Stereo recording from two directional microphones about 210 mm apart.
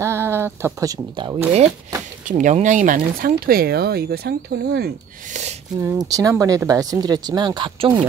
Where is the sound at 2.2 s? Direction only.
35° right (ahead or behind).